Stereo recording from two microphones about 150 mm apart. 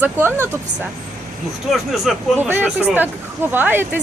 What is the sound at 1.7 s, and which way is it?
Speech, centre (ahead or behind).